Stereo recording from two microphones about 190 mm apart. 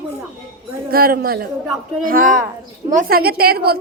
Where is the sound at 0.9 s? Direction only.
50° right (ahead or behind).